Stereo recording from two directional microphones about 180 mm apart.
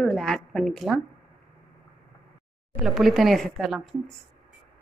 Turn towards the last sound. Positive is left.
turn(degrees=0)  # may be behind; listen again after turning